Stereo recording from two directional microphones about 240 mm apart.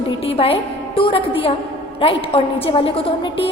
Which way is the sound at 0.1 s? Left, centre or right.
Left.